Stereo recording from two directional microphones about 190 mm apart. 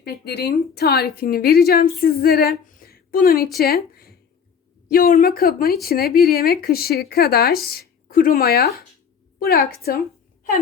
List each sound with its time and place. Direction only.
0.0 s a woman's voice: 60° left (ahead or behind)